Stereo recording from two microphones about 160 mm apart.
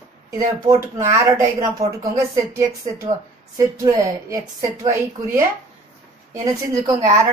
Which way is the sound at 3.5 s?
20° right (ahead or behind).